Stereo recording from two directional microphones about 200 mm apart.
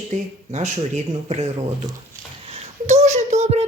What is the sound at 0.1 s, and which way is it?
Speech, 35° right (ahead or behind).